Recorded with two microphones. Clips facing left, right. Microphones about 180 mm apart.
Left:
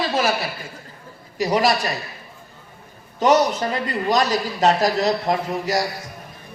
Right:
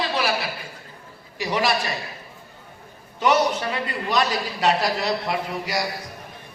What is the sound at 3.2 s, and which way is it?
A man's voice, 40° left (ahead or behind).